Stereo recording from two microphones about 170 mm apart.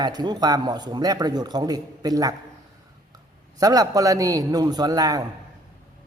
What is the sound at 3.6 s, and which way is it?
A man's voice, 20° right (ahead or behind).